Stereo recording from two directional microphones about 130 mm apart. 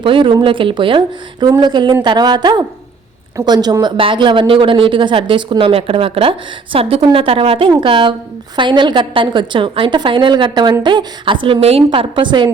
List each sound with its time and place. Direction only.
0.0 s a woman's voice: 40° right (ahead or behind)